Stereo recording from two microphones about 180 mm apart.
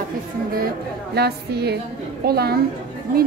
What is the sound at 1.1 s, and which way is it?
A woman's voice, 65° right (ahead or behind).